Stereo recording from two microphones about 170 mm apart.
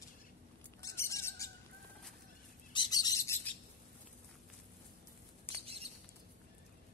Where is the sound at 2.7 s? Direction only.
25° left (ahead or behind).